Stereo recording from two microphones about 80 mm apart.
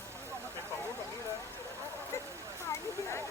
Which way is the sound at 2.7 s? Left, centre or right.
Left.